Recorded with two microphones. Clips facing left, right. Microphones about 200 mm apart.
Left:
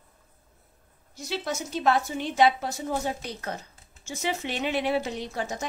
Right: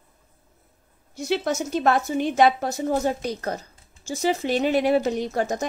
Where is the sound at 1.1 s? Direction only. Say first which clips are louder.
Right 7 dB; 60° right (ahead or behind).